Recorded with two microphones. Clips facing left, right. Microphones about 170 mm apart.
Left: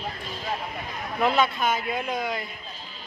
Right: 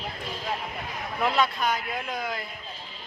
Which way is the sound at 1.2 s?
Centre (ahead or behind).